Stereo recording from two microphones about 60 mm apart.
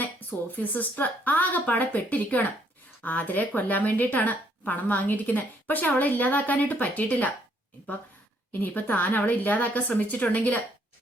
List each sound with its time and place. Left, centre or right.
0.0 s a woman's voice: left
8.6 s a woman's voice: left